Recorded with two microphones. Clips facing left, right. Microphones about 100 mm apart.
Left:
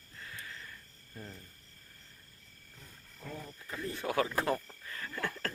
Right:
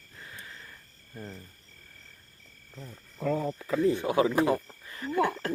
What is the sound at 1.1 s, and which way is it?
Speech, 30° right (ahead or behind).